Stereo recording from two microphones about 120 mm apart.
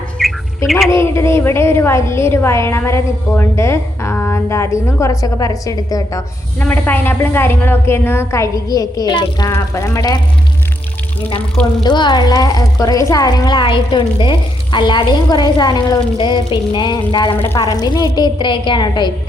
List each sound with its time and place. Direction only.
0.2 s squawk: centre (ahead or behind)
0.9 s a woman's voice: 25° left (ahead or behind)
6.6 s a woman's voice: 15° left (ahead or behind); by 9.5 s 35° left (ahead or behind)
9.5 s a woman's voice: 25° left (ahead or behind)
11.8 s a woman's voice: 40° left (ahead or behind)
17.4 s a woman's voice: 25° left (ahead or behind)